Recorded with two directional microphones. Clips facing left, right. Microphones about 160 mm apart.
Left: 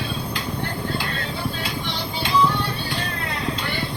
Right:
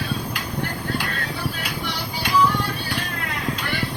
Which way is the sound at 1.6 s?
25° left (ahead or behind).